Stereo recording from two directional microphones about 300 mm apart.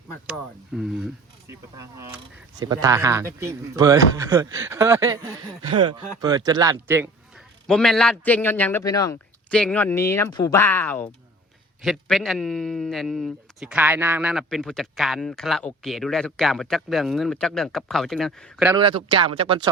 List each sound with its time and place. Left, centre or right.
0.1 s speech: centre
18.8 s speech: centre